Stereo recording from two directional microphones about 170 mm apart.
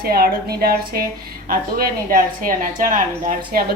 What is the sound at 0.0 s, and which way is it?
Speech, 65° right (ahead or behind).